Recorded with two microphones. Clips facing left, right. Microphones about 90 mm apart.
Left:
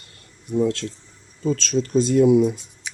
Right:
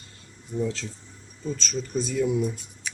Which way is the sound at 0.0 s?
65° left (ahead or behind).